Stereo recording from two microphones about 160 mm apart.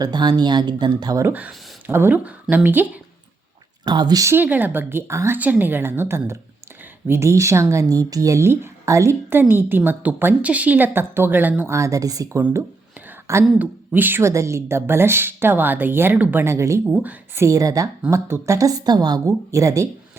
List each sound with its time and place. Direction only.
0.0 s a woman's voice: 25° right (ahead or behind)
1.3 s a woman's voice: 10° right (ahead or behind)
3.8 s a woman's voice: 25° right (ahead or behind)
12.4 s a woman's voice: 10° right (ahead or behind)